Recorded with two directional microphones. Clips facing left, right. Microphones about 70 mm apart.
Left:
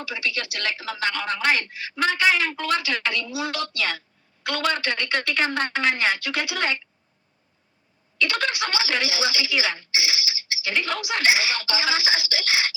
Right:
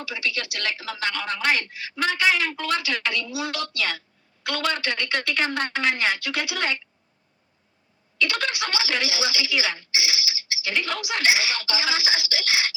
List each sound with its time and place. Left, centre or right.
0.0 s speech: left
8.2 s speech: left